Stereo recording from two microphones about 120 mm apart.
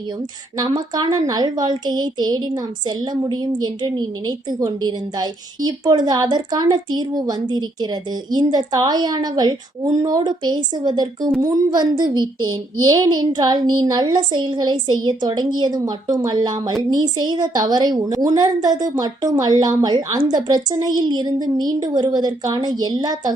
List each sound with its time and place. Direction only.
0.6 s a woman's voice: 35° right (ahead or behind)